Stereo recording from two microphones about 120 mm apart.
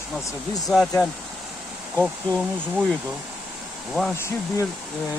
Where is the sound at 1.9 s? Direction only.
5° left (ahead or behind).